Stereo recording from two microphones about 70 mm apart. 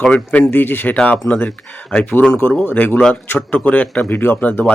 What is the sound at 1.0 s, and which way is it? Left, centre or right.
Speech, centre.